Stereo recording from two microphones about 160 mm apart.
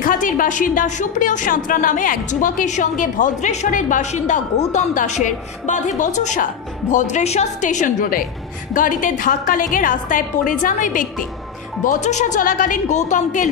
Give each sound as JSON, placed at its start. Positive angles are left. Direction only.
{"t": 0.0, "sound": "a woman's voice", "side_deg": 55}